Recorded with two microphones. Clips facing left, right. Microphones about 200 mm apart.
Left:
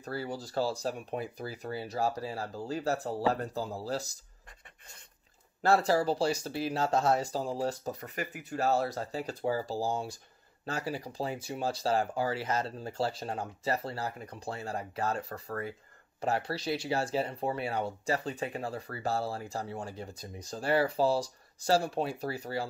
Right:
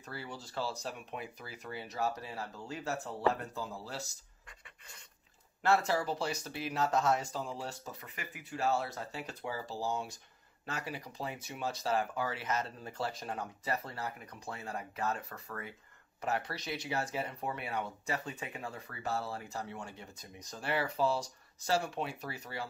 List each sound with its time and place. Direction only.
0.0 s speech: 40° left (ahead or behind)
5.6 s speech: 35° left (ahead or behind)